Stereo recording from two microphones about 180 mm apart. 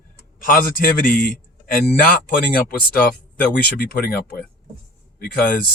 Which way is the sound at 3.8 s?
55° left (ahead or behind).